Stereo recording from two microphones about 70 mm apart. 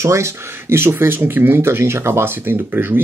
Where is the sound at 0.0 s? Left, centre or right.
Right.